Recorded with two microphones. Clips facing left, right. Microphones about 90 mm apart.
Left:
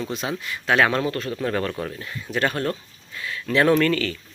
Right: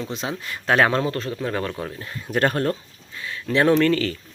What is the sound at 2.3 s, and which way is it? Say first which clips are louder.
Speech: right 3 dB; 45° right (ahead or behind).